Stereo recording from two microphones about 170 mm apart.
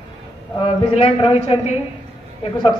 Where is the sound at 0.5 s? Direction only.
30° left (ahead or behind).